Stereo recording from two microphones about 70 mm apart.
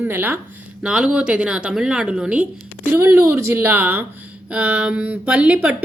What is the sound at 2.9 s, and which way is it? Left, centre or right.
A woman's voice, right.